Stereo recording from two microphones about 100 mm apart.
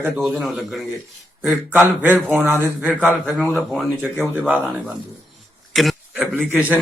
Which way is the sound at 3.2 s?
Centre (ahead or behind).